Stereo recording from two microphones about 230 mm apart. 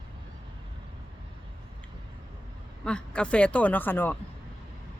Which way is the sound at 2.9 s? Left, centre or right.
Centre.